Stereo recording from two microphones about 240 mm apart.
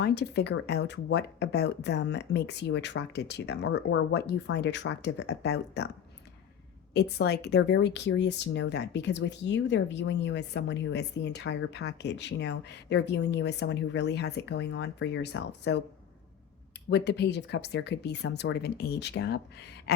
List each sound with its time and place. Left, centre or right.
0.0 s speech: left
6.9 s speech: left
16.9 s speech: left